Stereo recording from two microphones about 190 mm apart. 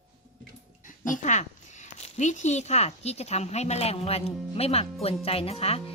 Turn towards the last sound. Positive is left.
turn(degrees=30)  # may be behind; listen again after turning